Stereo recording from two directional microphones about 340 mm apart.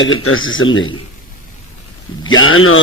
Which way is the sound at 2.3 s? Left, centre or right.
Left.